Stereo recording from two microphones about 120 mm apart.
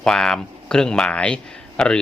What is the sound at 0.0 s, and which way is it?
Speech, 5° left (ahead or behind).